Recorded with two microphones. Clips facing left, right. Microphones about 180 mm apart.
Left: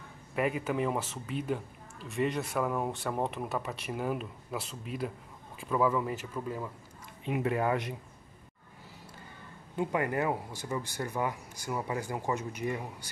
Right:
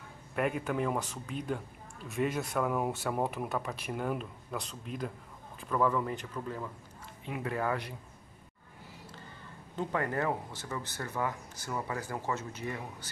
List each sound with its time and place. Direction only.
0.4 s speech: centre (ahead or behind); by 7.9 s 20° left (ahead or behind)
9.8 s speech: 10° left (ahead or behind)